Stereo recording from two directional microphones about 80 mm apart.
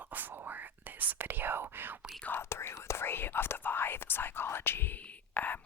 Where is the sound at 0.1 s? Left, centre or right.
Right.